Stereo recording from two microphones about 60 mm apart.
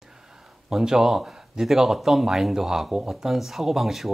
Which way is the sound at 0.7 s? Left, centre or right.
Centre.